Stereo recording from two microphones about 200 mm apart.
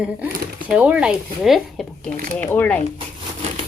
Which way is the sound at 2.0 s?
45° right (ahead or behind).